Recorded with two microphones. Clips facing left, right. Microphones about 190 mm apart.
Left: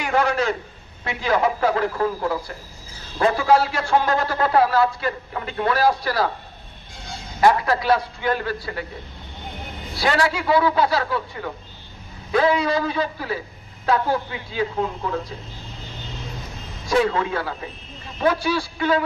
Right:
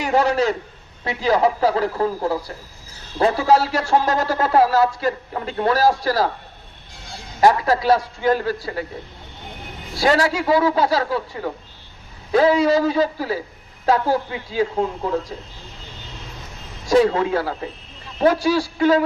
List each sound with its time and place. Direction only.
0.0 s a man's voice: 35° right (ahead or behind)
7.4 s a man's voice: 40° right (ahead or behind)
10.0 s a man's voice: 40° right (ahead or behind)
16.8 s a man's voice: 40° right (ahead or behind)